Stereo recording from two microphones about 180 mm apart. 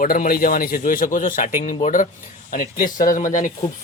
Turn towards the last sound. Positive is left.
turn(degrees=45)  # may be behind; listen again after turning